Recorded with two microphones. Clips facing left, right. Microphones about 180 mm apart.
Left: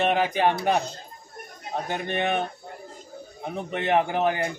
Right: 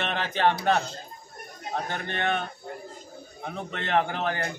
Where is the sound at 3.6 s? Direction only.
15° left (ahead or behind).